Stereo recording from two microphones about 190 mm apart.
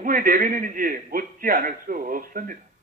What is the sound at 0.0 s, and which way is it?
A man's voice, 45° right (ahead or behind).